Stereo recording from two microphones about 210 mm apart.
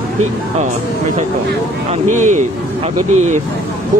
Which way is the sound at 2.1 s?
35° right (ahead or behind).